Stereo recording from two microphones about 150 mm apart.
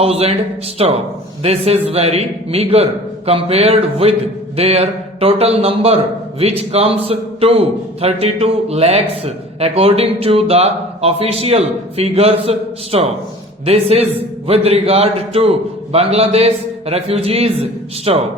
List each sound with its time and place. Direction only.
0.0 s a man's voice: 40° right (ahead or behind)